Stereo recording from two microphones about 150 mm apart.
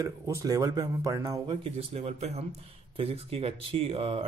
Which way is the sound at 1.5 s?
40° right (ahead or behind).